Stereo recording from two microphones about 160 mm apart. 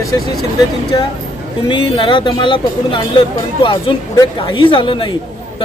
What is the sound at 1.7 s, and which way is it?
Speech, 30° left (ahead or behind).